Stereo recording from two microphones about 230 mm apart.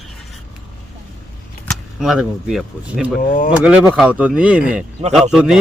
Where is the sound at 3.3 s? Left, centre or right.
Left.